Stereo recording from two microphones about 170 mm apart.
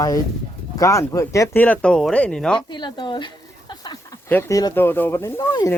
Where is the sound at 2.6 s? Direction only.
25° left (ahead or behind).